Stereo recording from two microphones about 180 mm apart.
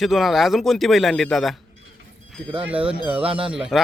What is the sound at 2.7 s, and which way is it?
Speech, 5° right (ahead or behind).